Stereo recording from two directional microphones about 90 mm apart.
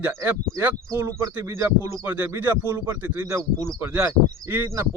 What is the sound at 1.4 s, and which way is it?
Speech, 35° right (ahead or behind).